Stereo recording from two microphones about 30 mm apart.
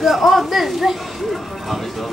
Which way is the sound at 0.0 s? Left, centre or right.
Centre.